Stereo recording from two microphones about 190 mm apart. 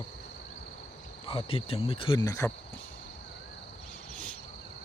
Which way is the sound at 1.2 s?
30° left (ahead or behind).